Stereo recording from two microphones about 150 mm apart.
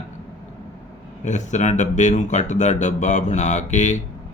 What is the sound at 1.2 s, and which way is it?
A man's voice, 55° left (ahead or behind).